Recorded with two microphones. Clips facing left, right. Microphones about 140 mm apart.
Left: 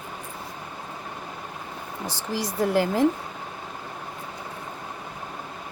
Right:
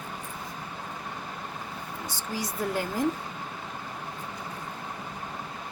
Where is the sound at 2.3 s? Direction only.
90° left.